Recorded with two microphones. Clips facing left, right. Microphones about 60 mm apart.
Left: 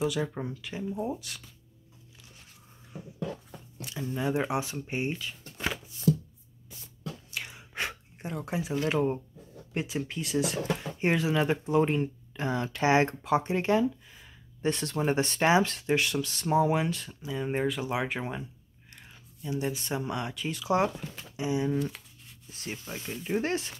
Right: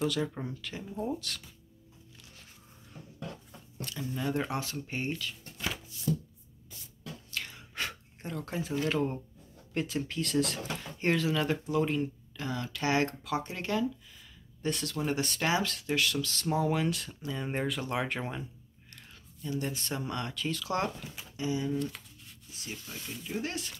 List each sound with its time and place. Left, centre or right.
0.0 s speech: centre
2.9 s beatboxing: centre
3.9 s speech: left
7.2 s chewing: centre
8.8 s speech: centre
11.0 s speech: centre
16.9 s speech: centre
19.6 s speech: centre
22.5 s speech: left